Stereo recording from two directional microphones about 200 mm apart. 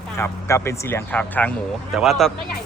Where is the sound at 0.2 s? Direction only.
15° left (ahead or behind).